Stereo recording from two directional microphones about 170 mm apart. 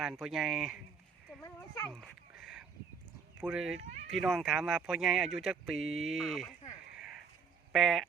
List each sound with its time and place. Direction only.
0.0 s speech: centre (ahead or behind)
1.5 s speech: 15° left (ahead or behind)
2.0 s a sound: centre (ahead or behind)
3.3 s speech: 5° right (ahead or behind)
7.7 s speech: centre (ahead or behind)